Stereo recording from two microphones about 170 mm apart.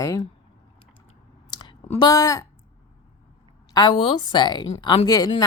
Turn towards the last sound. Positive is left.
turn(degrees=20)  # may be behind; listen again after turning